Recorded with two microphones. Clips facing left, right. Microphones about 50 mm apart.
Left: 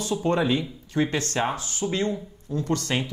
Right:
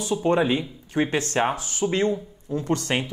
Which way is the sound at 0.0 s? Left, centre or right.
Centre.